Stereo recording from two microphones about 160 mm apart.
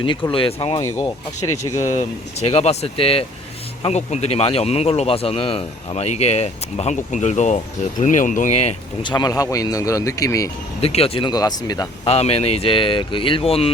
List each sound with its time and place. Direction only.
0.0 s speech: 30° left (ahead or behind)
2.0 s speech: 40° left (ahead or behind)
9.0 s speech: 25° left (ahead or behind)
10.8 s speech: 40° left (ahead or behind)
12.0 s speech: 40° left (ahead or behind)